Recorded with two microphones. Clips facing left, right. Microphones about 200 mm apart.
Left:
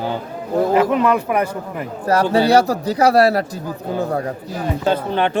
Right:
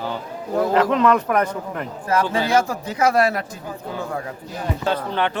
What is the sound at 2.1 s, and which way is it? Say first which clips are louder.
Speech: left 5 dB; 40° left (ahead or behind).